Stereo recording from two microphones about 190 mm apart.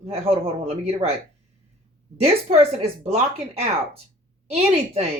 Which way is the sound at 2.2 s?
30° right (ahead or behind).